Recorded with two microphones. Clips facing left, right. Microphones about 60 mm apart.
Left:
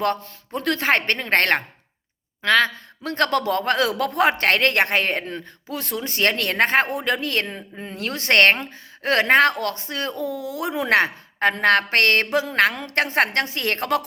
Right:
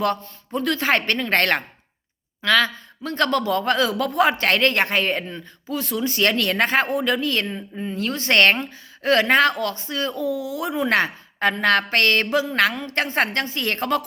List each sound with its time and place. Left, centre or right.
0.5 s speech: left
2.6 s a man's voice: left
12.7 s a woman's voice: left